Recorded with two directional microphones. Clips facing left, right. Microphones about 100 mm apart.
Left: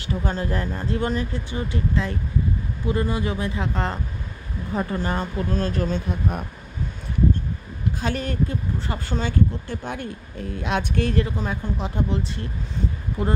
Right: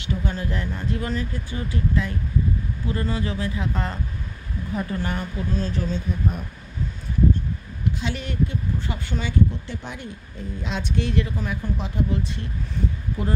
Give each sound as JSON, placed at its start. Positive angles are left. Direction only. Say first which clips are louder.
{"t": 0.0, "sound": "speech", "louder": "left 2 dB", "side_deg": 35}
{"t": 5.6, "sound": "speech", "louder": "left 3 dB", "side_deg": 50}
{"t": 8.0, "sound": "speech", "louder": "left 3 dB", "side_deg": 45}
{"t": 11.2, "sound": "speech", "louder": "left 1 dB", "side_deg": 30}